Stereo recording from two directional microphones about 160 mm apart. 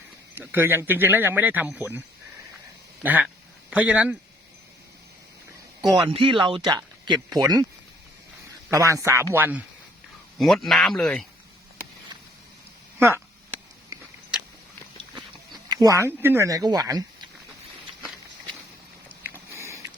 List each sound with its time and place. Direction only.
0.3 s speech: 15° right (ahead or behind)
3.0 s speech: 10° right (ahead or behind)
5.8 s a man's voice: centre (ahead or behind)
6.1 s speech: 35° right (ahead or behind)
8.7 s speech: 20° right (ahead or behind)
10.3 s a man's voice: centre (ahead or behind)
13.0 s speech: 15° right (ahead or behind)
14.3 s a sound: 5° right (ahead or behind)
15.1 s a sound: 25° right (ahead or behind)
19.5 s sniff: 20° right (ahead or behind)